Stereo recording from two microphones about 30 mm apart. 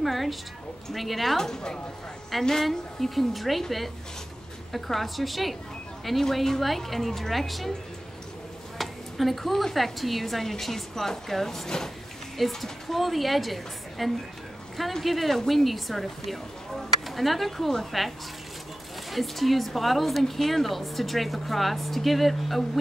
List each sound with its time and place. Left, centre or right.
0.0 s a woman's voice: centre
1.4 s a woman's voice: left
2.3 s a woman's voice: centre
4.7 s a woman's voice: centre
8.7 s a sound: centre
9.8 s a woman's voice: centre
12.4 s a woman's voice: centre